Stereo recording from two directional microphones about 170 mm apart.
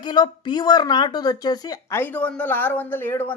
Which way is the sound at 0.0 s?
25° left (ahead or behind).